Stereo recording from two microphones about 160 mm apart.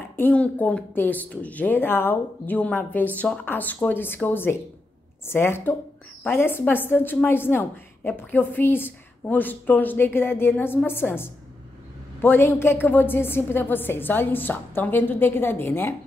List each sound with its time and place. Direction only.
0.1 s a woman's voice: 10° left (ahead or behind)